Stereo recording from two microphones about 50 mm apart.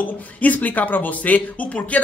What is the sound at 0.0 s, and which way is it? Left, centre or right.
Speech, left.